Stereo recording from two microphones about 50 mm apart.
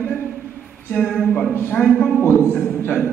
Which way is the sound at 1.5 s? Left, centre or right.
Left.